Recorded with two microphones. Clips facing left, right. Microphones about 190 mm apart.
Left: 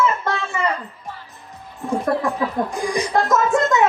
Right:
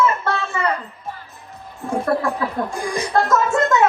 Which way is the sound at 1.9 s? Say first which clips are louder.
Even; 15° left (ahead or behind).